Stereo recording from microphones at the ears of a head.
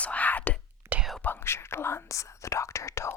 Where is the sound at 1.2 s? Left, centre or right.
Left.